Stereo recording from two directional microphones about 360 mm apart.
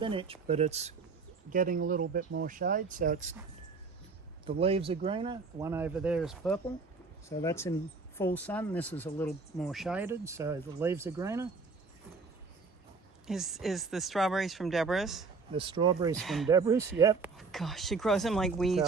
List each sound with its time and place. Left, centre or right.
0.0 s speech: centre
4.4 s speech: centre
13.2 s speech: centre
15.5 s speech: centre
16.1 s speech: centre